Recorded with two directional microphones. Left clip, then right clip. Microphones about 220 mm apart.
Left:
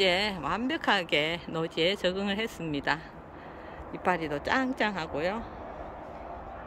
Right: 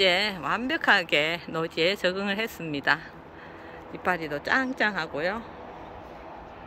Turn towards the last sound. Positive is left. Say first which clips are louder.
# right 2 dB
turn(degrees=5)  # may be behind; listen again after turning